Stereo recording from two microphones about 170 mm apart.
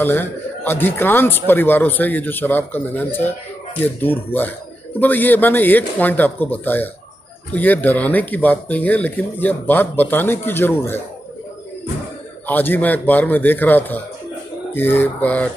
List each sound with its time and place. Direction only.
0.0 s speech: 10° left (ahead or behind)
12.4 s speech: 10° left (ahead or behind)